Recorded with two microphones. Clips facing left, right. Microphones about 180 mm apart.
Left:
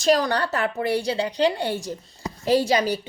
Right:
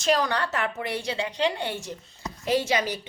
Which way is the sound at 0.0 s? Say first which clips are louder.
Left 4 dB; 35° left (ahead or behind).